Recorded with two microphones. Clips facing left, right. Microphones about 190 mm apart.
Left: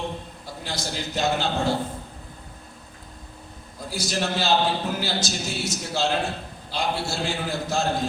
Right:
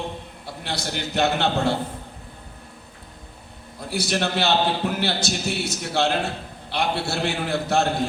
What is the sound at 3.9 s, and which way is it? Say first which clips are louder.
A man's voice: right 3 dB; 65° right (ahead or behind).